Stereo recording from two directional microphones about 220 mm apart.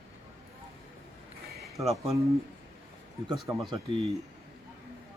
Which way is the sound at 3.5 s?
20° right (ahead or behind).